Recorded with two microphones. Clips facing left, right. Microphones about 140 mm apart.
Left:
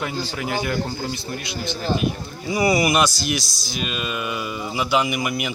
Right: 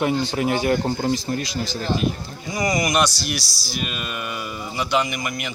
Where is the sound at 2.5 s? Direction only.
10° left (ahead or behind).